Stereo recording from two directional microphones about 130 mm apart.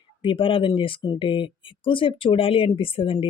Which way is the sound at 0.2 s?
40° left (ahead or behind).